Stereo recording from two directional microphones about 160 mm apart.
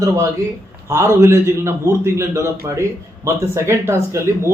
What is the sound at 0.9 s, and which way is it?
A man's voice, 15° right (ahead or behind).